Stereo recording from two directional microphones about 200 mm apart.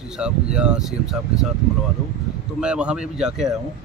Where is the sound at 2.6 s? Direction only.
5° right (ahead or behind).